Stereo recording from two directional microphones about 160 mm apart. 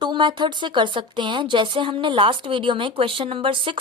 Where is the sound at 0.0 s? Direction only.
30° right (ahead or behind).